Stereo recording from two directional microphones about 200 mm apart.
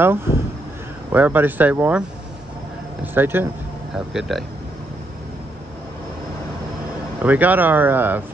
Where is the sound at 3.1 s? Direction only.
10° right (ahead or behind).